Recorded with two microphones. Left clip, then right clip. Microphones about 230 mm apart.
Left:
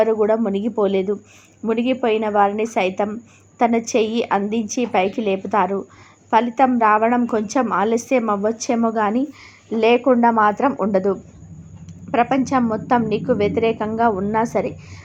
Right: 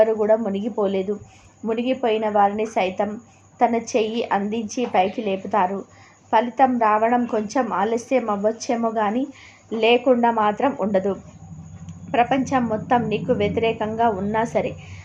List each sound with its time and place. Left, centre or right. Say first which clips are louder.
0.0 s a woman's voice: left 1 dB; centre